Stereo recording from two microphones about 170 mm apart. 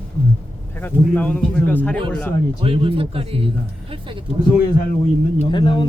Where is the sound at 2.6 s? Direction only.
30° right (ahead or behind).